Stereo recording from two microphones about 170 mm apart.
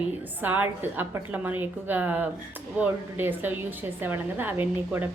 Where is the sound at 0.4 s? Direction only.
10° right (ahead or behind).